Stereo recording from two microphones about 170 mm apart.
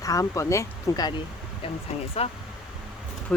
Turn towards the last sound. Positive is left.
turn(degrees=5)  # may be behind; listen again after turning